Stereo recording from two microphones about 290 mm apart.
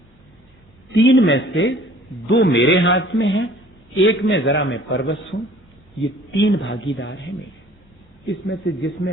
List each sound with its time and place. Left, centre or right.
0.9 s speech: left
8.3 s speech: left